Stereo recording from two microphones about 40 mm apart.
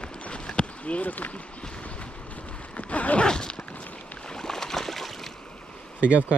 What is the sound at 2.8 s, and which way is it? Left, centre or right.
Zipper, left.